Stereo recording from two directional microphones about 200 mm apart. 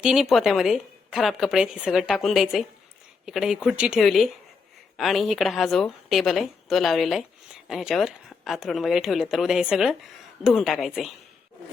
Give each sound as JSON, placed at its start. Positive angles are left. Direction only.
{"t": 0.0, "sound": "speech", "side_deg": 0}